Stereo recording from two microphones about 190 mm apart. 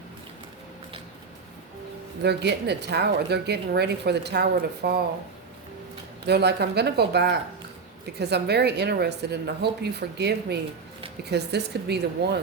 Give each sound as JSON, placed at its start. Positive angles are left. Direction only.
{"t": 2.2, "sound": "a woman's voice", "side_deg": -60}
{"t": 6.2, "sound": "a woman's voice", "side_deg": -60}